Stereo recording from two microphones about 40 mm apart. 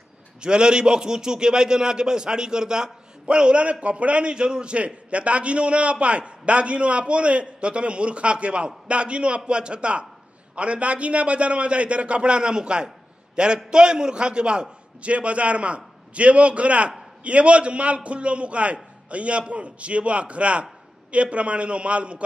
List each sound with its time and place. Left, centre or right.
0.4 s a man's voice: right